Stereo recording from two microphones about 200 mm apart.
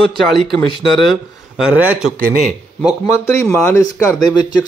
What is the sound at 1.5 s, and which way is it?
Speech, 5° right (ahead or behind).